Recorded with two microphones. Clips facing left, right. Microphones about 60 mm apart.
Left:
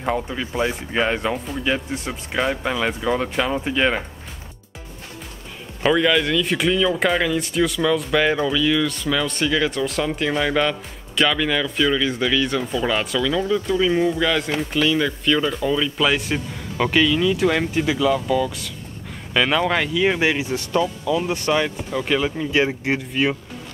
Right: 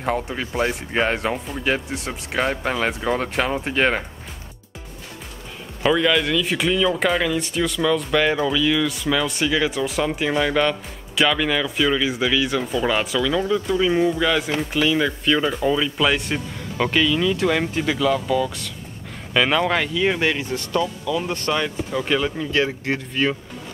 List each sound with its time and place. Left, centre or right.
0.0 s speech: centre
5.8 s speech: centre
22.4 s speech: centre